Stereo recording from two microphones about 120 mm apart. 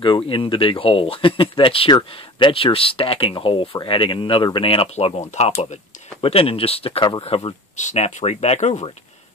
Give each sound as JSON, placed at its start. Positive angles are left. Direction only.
{"t": 0.0, "sound": "speech", "side_deg": 45}
{"t": 7.7, "sound": "speech", "side_deg": 80}